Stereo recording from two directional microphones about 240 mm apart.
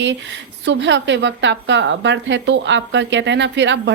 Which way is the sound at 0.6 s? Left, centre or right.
Right.